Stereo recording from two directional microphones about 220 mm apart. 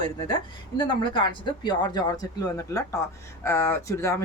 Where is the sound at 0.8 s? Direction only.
20° left (ahead or behind).